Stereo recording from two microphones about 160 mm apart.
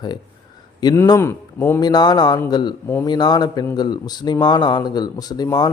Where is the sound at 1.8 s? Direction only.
25° left (ahead or behind).